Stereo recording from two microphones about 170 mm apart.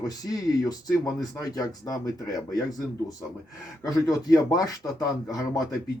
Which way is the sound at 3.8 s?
20° left (ahead or behind).